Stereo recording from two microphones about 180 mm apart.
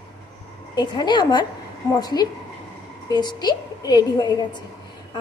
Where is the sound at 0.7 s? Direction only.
25° left (ahead or behind).